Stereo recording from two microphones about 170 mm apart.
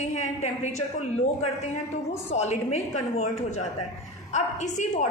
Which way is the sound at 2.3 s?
40° left (ahead or behind).